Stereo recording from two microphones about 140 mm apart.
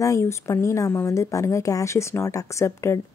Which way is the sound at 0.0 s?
20° left (ahead or behind).